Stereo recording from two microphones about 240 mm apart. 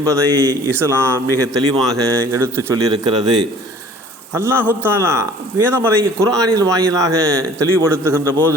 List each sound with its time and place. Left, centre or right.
0.0 s a man's voice: centre